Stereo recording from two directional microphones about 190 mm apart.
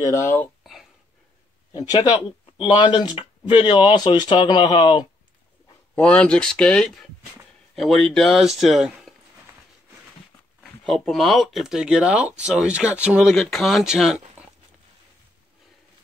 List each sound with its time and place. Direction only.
0.0 s speech: 15° left (ahead or behind)
1.7 s speech: 20° left (ahead or behind)
5.9 s speech: 5° left (ahead or behind)
10.6 s speech: centre (ahead or behind)